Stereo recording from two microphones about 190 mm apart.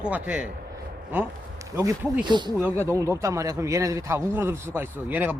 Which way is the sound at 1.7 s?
15° right (ahead or behind).